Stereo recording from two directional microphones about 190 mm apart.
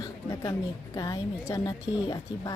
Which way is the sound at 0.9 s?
15° left (ahead or behind).